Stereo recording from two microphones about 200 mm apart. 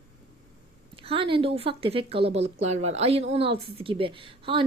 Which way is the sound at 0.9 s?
25° right (ahead or behind).